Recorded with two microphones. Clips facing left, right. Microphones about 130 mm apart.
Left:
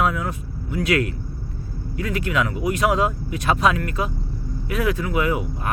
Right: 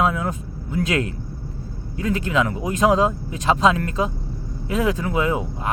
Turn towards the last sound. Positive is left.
turn(degrees=-25)  # may be behind; listen again after turning